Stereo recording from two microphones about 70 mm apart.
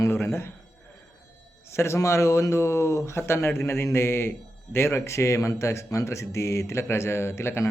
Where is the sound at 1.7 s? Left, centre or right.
Left.